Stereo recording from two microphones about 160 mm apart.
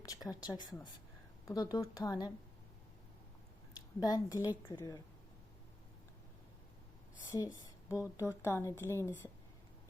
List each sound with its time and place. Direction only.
0.0 s speech: 25° left (ahead or behind)
3.8 s a woman's voice: 25° left (ahead or behind)
7.3 s a woman's voice: 20° left (ahead or behind)